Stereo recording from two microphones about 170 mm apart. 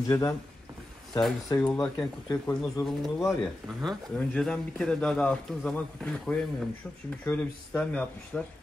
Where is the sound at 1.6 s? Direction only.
10° left (ahead or behind).